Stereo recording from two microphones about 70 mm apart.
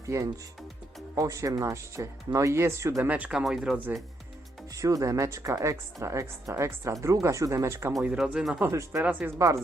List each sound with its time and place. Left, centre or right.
0.1 s speech: right
1.1 s speech: right
3.0 s speech: right
3.3 s speech: centre
4.7 s speech: right
8.2 s speech: centre
8.7 s speech: right
9.0 s speech: right